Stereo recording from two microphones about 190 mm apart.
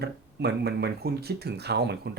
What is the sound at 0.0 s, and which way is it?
Speech, 60° right (ahead or behind).